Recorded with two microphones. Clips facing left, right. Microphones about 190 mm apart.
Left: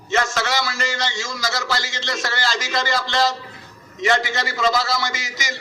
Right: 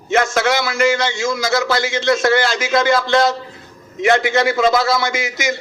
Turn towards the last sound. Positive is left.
turn(degrees=-55)  # may be behind; listen again after turning